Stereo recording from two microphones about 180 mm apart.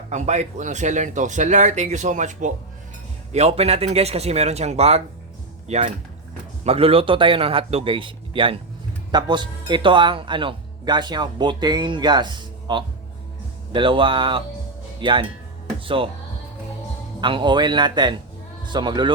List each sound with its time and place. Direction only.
0.1 s a man's voice: 40° right (ahead or behind)
17.2 s a man's voice: 25° right (ahead or behind)